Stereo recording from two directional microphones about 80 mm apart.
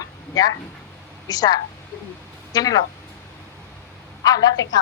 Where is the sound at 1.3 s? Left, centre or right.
Left.